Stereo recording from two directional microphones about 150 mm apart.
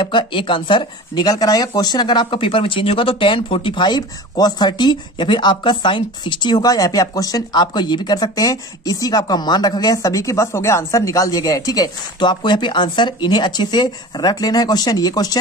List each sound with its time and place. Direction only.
0.0 s speech: 35° left (ahead or behind)